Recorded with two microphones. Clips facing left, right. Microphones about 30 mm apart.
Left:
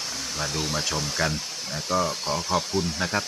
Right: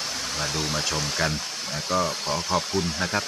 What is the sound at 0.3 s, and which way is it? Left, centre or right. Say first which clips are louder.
Speech: even; centre.